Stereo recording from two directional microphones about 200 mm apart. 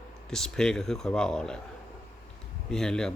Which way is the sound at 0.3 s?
5° left (ahead or behind).